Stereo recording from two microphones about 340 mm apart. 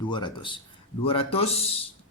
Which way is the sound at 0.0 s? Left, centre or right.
Centre.